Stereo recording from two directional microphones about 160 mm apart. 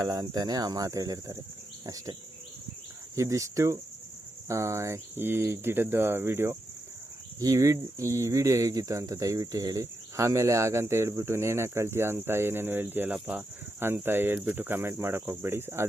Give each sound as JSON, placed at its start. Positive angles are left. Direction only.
{"t": 0.0, "sound": "speech", "side_deg": -25}
{"t": 3.2, "sound": "speech", "side_deg": -20}